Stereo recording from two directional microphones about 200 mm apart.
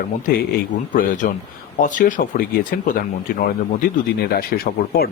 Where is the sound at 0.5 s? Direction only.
40° left (ahead or behind).